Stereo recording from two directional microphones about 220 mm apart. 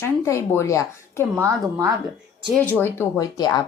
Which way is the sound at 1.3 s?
15° right (ahead or behind).